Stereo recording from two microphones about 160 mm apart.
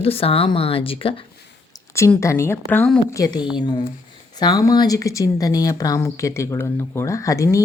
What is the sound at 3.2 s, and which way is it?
Speech, 25° left (ahead or behind).